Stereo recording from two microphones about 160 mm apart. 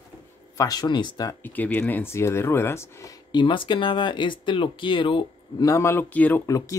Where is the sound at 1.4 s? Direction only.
10° left (ahead or behind).